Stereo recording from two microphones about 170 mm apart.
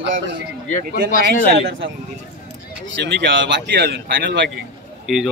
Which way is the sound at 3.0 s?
90° right.